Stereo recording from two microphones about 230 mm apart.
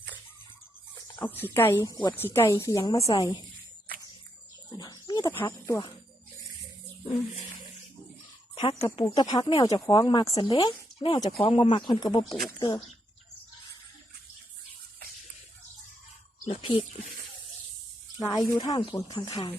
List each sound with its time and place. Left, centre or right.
1.1 s speech: centre
4.8 s wild animals: centre
8.5 s speech: left
16.5 s speech: left
18.2 s speech: centre